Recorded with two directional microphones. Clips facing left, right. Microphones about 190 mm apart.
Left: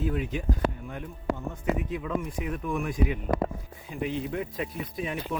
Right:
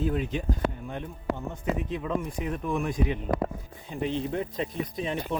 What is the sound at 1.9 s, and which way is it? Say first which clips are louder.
Speech: right 1 dB; 30° right (ahead or behind).